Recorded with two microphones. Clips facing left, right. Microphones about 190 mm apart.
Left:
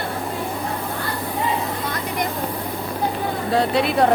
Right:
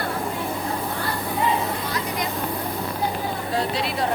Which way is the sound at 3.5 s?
65° left (ahead or behind).